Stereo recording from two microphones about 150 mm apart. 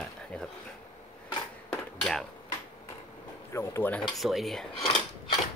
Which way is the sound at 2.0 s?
Centre (ahead or behind).